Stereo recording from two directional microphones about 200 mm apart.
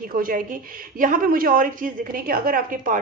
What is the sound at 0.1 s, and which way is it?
A woman's voice, 45° right (ahead or behind).